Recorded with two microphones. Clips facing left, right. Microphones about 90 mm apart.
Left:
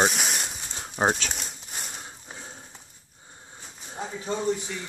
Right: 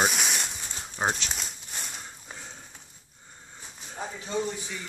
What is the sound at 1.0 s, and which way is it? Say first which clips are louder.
Speech: left 4 dB; 40° left (ahead or behind).